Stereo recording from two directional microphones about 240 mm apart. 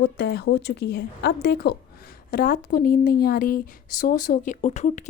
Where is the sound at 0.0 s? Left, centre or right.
Left.